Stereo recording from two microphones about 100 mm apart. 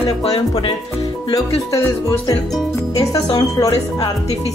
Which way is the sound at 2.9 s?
35° left (ahead or behind).